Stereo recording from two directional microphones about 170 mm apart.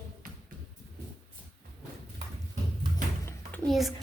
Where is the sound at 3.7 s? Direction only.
Centre (ahead or behind).